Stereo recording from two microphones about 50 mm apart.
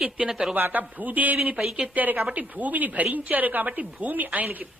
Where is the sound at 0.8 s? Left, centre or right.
Right.